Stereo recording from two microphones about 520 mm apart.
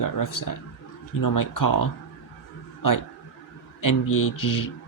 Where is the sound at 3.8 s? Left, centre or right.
Left.